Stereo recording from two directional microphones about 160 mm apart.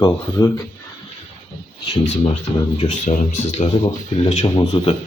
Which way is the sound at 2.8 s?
50° left (ahead or behind).